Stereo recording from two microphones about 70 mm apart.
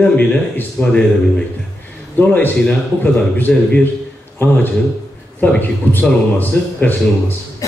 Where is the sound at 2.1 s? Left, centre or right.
Left.